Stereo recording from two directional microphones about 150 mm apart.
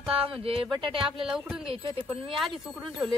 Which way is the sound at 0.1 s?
40° right (ahead or behind).